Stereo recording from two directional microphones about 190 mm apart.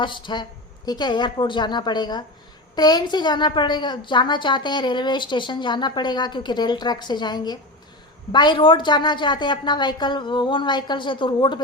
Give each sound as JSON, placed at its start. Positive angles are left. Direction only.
{"t": 0.0, "sound": "a woman's voice", "side_deg": 25}